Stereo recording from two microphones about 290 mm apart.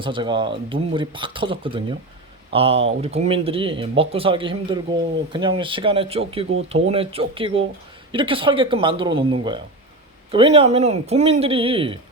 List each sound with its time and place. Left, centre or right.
0.0 s a man's voice: centre